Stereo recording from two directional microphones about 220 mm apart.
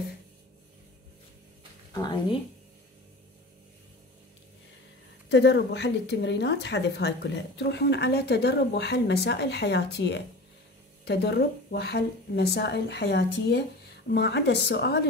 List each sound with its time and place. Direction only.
5.3 s a woman's voice: 50° left (ahead or behind)